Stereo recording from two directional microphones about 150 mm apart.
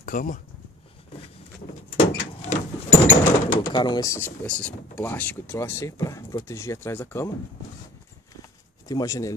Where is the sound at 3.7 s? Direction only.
30° left (ahead or behind).